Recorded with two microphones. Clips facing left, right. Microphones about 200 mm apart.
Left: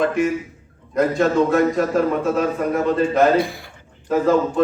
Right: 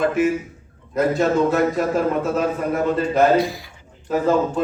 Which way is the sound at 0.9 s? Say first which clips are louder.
Left 1 dB; centre (ahead or behind).